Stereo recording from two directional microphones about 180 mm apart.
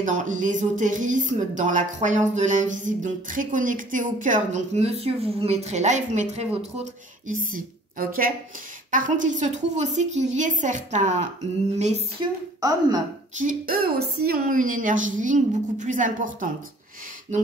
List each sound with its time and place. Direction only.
0.0 s speech: 45° right (ahead or behind)
12.2 s a woman's voice: 20° right (ahead or behind)
13.4 s speech: 50° right (ahead or behind)